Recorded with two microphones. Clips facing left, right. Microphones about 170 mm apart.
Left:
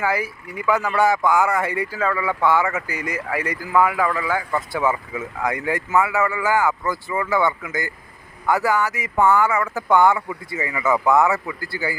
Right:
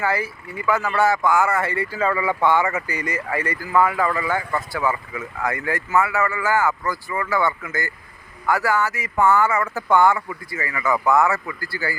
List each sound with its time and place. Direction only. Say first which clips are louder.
0.0 s speech: even; 15° left (ahead or behind)
2.0 s speech: right 2 dB; centre (ahead or behind)
4.7 s speech: left 3 dB; 20° left (ahead or behind)